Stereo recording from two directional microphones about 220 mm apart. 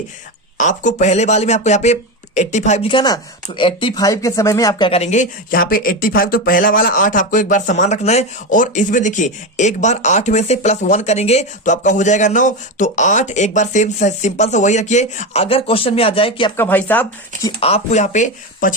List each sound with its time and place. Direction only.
0.5 s speech: 35° left (ahead or behind)
16.6 s speech: 10° left (ahead or behind)
17.6 s speech: 30° left (ahead or behind)